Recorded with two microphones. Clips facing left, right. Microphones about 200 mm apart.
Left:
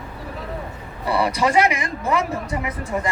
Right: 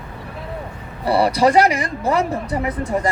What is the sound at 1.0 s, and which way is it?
Speech, 35° right (ahead or behind).